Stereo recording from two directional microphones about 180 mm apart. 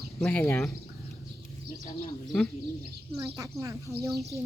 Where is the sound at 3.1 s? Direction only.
15° right (ahead or behind).